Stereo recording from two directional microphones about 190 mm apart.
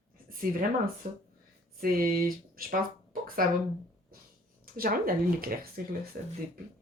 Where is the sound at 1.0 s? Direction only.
50° right (ahead or behind).